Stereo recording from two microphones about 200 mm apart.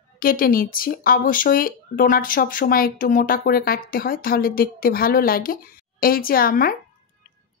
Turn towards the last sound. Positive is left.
turn(degrees=45)  # may be behind; listen again after turning